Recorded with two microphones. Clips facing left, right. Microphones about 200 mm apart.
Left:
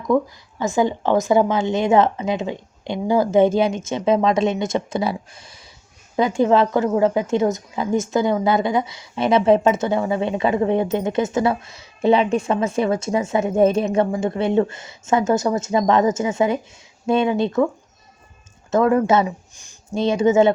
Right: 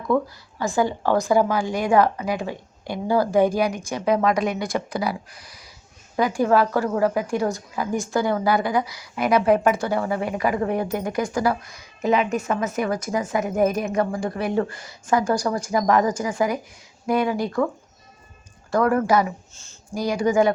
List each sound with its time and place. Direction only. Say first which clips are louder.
0.1 s a woman's voice: left 3 dB; 15° left (ahead or behind)
18.7 s a woman's voice: left 3 dB; 20° left (ahead or behind)